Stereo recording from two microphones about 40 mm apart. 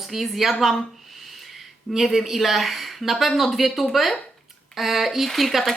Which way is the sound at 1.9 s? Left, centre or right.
Centre.